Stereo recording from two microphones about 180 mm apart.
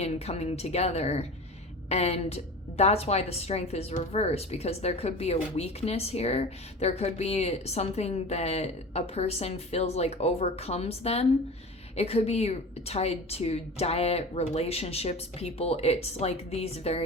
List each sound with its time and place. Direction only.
0.0 s a woman's voice: 35° left (ahead or behind)